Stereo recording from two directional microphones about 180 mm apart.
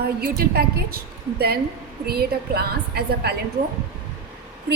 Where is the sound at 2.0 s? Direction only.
60° right (ahead or behind).